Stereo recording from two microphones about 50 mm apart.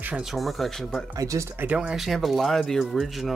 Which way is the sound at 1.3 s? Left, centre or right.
Right.